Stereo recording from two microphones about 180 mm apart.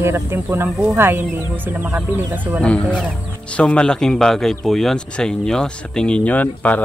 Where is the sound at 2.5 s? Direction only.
5° left (ahead or behind).